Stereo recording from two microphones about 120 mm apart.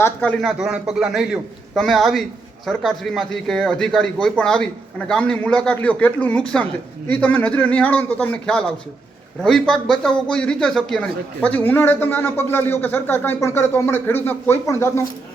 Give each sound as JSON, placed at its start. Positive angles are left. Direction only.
{"t": 0.0, "sound": "a man's voice", "side_deg": 10}
{"t": 0.4, "sound": "a man's voice", "side_deg": -5}